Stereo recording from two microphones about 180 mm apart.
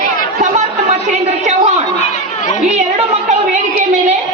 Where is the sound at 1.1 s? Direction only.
40° right (ahead or behind).